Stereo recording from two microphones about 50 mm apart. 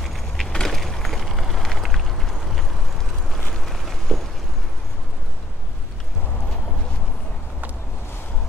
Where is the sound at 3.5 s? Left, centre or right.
Centre.